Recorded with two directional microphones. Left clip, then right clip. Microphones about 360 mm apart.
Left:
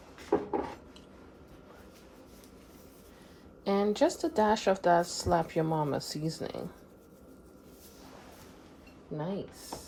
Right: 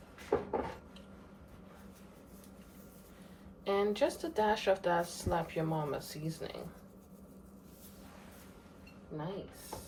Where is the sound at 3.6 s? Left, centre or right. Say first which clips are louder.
Left 4 dB; centre.